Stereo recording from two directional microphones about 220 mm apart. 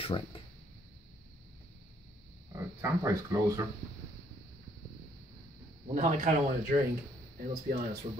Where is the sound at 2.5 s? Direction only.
15° right (ahead or behind).